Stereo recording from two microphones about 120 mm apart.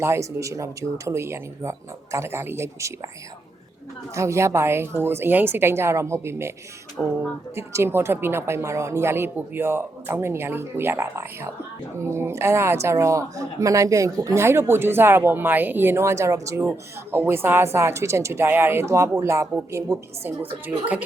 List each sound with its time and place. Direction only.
0.0 s a woman's voice: 25° right (ahead or behind)
4.1 s a woman's voice: 25° right (ahead or behind)
7.0 s speech: 15° left (ahead or behind)
7.5 s a woman's voice: 20° right (ahead or behind)